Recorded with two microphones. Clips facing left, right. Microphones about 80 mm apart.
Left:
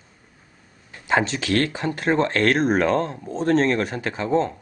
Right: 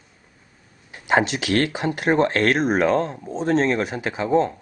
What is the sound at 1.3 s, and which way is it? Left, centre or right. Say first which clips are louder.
Speech: right 1 dB; right.